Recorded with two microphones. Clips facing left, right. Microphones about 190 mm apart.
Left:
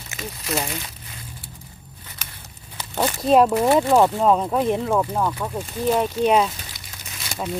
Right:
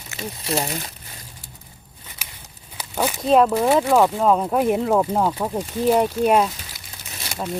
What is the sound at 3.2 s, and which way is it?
Speech, 5° left (ahead or behind).